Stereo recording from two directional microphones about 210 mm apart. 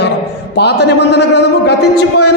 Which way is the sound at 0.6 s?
50° left (ahead or behind).